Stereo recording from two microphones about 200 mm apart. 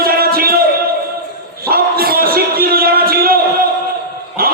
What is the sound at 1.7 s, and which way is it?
Music, 50° right (ahead or behind).